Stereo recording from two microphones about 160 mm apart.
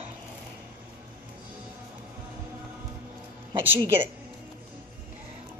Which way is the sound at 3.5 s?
30° right (ahead or behind).